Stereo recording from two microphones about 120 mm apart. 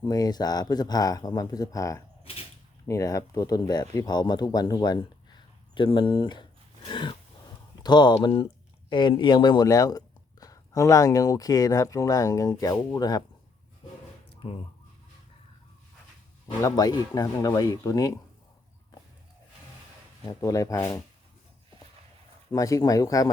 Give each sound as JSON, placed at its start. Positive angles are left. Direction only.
{"t": 0.0, "sound": "speech", "side_deg": 35}
{"t": 16.6, "sound": "speech", "side_deg": 30}
{"t": 20.4, "sound": "speech", "side_deg": 25}
{"t": 22.5, "sound": "speech", "side_deg": 30}